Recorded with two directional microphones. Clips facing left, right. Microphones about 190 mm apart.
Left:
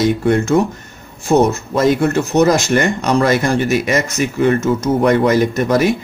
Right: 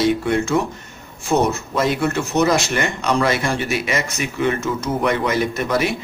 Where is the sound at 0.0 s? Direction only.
45° left (ahead or behind).